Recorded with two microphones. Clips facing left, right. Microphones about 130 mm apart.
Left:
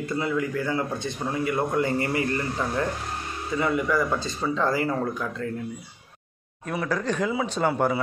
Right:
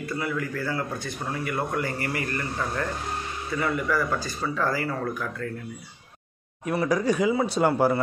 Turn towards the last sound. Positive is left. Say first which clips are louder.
# right 2 dB
turn(degrees=0)  # may be behind; listen again after turning